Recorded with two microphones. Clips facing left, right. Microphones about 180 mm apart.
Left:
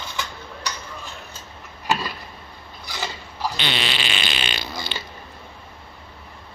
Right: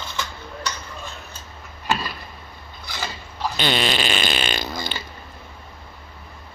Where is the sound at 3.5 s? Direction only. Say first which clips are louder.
Right 5 dB; 45° right (ahead or behind).